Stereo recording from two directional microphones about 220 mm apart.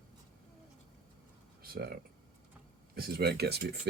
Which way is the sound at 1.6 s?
45° right (ahead or behind).